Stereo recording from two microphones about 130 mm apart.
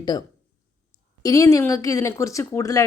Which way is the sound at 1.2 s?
25° left (ahead or behind).